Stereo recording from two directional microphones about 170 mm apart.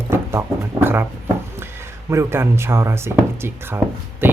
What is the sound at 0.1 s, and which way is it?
Music, 15° right (ahead or behind).